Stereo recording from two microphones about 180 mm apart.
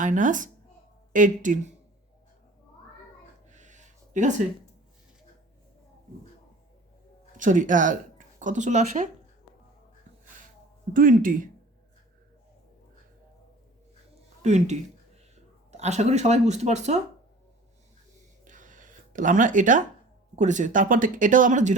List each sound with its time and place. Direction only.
0.0 s speech: 45° right (ahead or behind)
3.5 s a sound: 40° right (ahead or behind)
7.3 s speech: 45° right (ahead or behind)
10.9 s speech: 50° right (ahead or behind)
14.4 s speech: 40° right (ahead or behind)
18.4 s a sound: 45° right (ahead or behind)
20.3 s speech: 40° right (ahead or behind)